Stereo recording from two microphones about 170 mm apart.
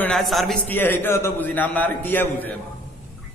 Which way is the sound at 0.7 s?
10° left (ahead or behind).